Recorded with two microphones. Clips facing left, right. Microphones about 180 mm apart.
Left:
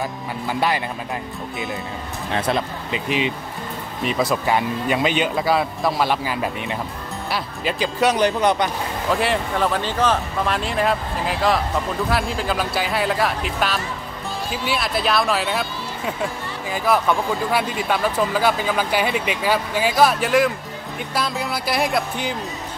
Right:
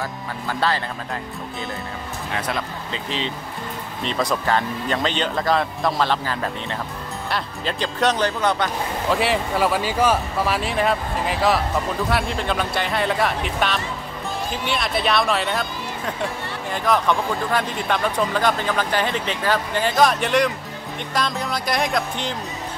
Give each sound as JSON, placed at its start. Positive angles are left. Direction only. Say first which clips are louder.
{"t": 0.5, "sound": "speech", "louder": "left 1 dB", "side_deg": 15}
{"t": 2.3, "sound": "speech", "louder": "left 5 dB", "side_deg": 30}
{"t": 2.9, "sound": "speech", "louder": "left 6 dB", "side_deg": 15}
{"t": 9.1, "sound": "speech", "louder": "even", "side_deg": 0}